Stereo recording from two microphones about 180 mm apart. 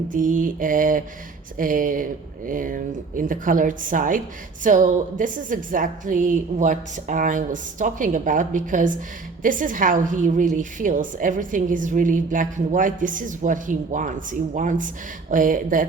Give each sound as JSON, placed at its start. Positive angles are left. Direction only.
{"t": 0.1, "sound": "a woman's voice", "side_deg": -45}